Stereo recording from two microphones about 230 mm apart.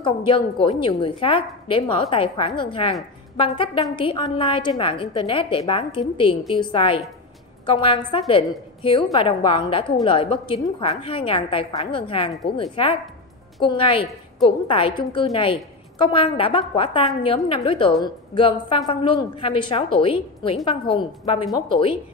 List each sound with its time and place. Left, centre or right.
0.0 s a woman's voice: left